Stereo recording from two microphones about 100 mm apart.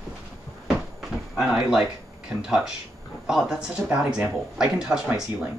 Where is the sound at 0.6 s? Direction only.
Centre (ahead or behind).